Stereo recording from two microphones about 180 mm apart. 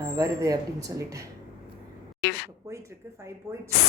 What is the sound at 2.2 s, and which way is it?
Speech, 65° left (ahead or behind).